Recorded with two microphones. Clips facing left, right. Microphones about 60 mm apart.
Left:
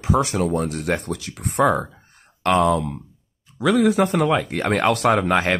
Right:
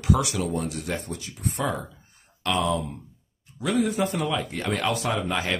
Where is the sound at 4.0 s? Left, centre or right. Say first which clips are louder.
Left 7 dB; left.